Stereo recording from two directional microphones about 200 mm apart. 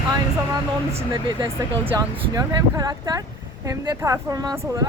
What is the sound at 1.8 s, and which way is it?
Speech, 10° right (ahead or behind).